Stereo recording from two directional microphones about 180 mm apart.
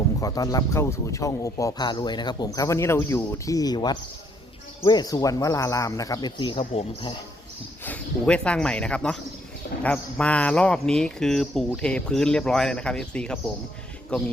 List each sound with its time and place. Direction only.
0.2 s a man's voice: 20° left (ahead or behind)
7.9 s speech: 5° left (ahead or behind)